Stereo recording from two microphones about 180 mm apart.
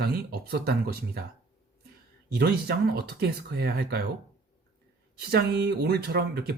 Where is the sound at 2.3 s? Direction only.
65° right (ahead or behind).